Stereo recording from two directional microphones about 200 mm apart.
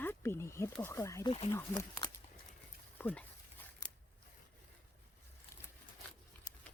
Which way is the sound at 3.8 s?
20° left (ahead or behind).